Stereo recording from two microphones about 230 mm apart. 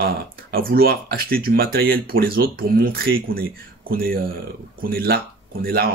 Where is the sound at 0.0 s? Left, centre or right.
Right.